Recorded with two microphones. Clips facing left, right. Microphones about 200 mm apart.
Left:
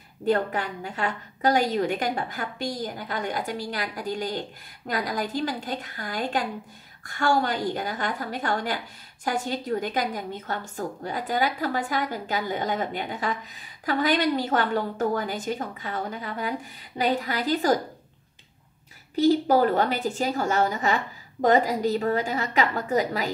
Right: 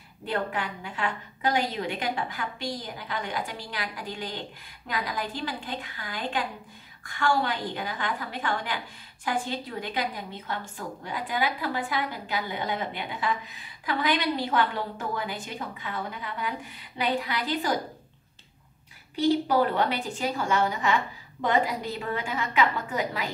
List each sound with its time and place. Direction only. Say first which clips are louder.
0.2 s a woman's voice: left 6 dB; 45° left (ahead or behind)
19.1 s a woman's voice: left 3 dB; 40° left (ahead or behind)